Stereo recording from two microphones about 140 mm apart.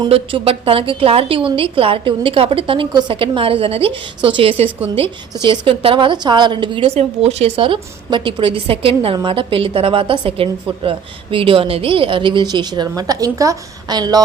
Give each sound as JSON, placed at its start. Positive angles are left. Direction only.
{"t": 0.1, "sound": "a woman's voice", "side_deg": -40}